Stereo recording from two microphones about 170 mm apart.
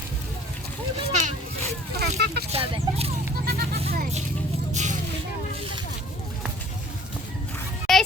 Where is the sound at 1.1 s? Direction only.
45° right (ahead or behind).